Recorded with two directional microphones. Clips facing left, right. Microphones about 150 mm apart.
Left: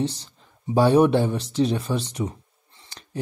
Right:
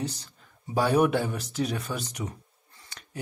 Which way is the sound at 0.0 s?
30° left (ahead or behind).